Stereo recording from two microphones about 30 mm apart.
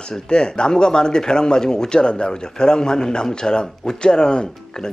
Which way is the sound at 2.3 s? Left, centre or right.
Left.